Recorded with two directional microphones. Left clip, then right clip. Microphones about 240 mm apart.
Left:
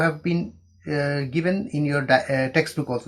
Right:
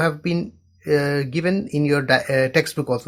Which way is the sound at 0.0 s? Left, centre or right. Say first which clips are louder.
Right 1 dB; right.